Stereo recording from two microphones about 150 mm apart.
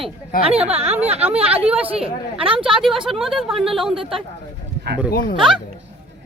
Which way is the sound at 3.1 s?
Centre (ahead or behind).